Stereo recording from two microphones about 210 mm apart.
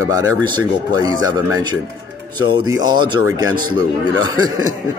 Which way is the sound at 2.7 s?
20° right (ahead or behind).